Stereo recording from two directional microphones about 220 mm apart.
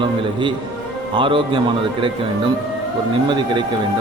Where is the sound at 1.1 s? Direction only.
20° right (ahead or behind).